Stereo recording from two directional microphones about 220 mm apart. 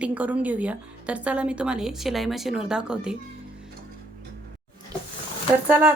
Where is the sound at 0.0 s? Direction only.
5° right (ahead or behind).